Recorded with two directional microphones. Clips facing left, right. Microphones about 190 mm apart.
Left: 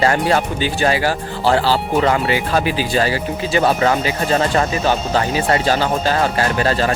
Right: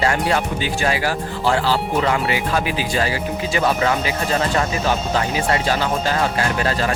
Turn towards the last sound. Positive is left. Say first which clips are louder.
# left 3 dB
turn(degrees=30)  # may be behind; listen again after turning